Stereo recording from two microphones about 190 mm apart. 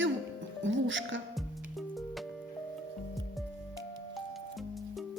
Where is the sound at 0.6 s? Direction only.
80° right.